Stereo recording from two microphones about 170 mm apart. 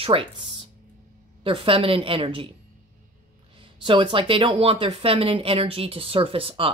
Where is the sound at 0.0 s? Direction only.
30° right (ahead or behind).